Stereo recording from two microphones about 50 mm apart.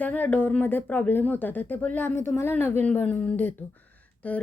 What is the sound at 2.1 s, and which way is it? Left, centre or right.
Speech, left.